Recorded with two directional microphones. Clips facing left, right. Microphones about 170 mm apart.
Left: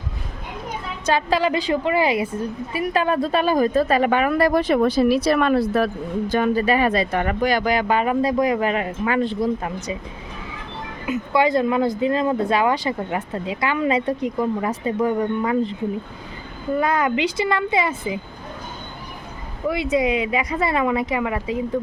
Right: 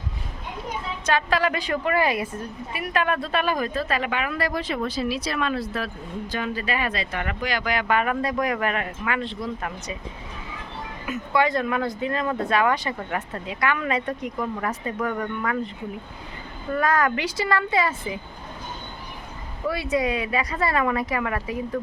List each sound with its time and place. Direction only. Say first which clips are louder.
1.1 s speech: left 3 dB; 30° left (ahead or behind)
11.3 s speech: left 4 dB; 30° left (ahead or behind)
16.7 s speech: left 2 dB; 20° left (ahead or behind)
19.6 s speech: left 4 dB; 20° left (ahead or behind)